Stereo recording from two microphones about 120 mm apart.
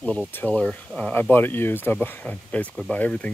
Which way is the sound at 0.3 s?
15° left (ahead or behind).